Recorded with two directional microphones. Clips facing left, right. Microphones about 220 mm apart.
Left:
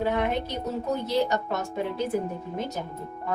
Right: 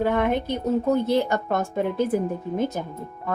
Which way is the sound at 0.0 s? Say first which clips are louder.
Right 4 dB; 55° right (ahead or behind).